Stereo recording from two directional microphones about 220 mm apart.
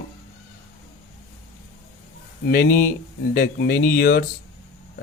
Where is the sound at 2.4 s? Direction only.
45° left (ahead or behind).